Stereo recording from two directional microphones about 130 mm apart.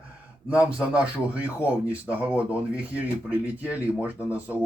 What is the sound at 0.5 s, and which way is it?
Speech, 10° right (ahead or behind).